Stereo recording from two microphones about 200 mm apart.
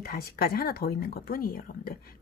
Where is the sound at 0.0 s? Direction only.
50° left (ahead or behind).